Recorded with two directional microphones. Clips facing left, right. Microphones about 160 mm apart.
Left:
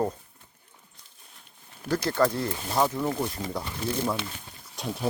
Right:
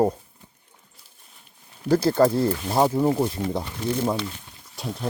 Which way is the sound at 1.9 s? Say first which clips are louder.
Right 6 dB; 35° right (ahead or behind).